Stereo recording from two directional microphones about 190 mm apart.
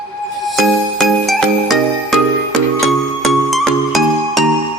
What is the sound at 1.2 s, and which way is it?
Music, centre (ahead or behind).